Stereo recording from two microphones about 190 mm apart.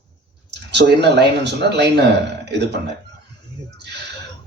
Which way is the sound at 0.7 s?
60° right (ahead or behind).